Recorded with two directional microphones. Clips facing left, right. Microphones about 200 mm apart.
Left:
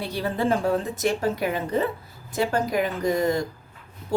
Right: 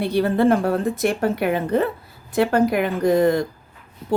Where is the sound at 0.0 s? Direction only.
60° right (ahead or behind).